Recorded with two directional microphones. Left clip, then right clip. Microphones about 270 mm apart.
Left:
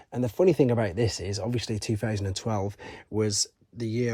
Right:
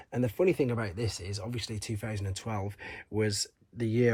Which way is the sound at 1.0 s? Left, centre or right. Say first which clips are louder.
Left 8 dB; left.